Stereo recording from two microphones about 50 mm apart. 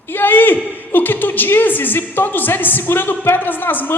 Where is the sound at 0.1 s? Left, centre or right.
Left.